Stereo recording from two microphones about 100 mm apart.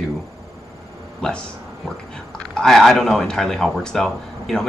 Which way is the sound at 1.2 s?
10° left (ahead or behind).